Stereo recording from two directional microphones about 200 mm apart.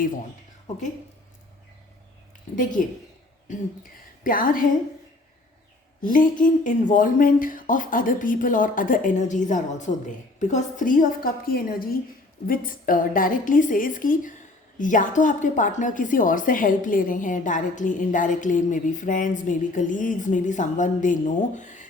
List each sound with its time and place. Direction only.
2.8 s a woman's voice: 40° left (ahead or behind)
4.2 s a woman's voice: 45° left (ahead or behind)
6.0 s a woman's voice: 45° left (ahead or behind)